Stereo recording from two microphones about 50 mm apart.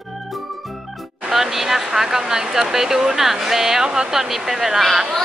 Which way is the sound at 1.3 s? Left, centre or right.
Centre.